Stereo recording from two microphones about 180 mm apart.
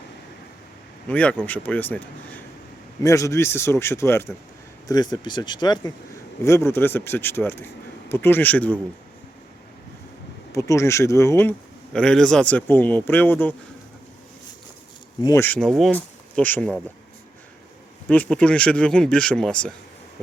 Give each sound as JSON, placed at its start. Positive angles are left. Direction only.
{"t": 1.0, "sound": "speech", "side_deg": 10}
{"t": 10.5, "sound": "speech", "side_deg": 15}
{"t": 15.2, "sound": "speech", "side_deg": 15}
{"t": 18.1, "sound": "speech", "side_deg": 5}